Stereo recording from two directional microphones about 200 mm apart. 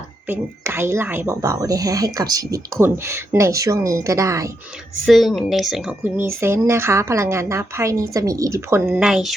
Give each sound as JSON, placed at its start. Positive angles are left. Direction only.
{"t": 0.3, "sound": "speech", "side_deg": -10}
{"t": 5.0, "sound": "speech", "side_deg": 0}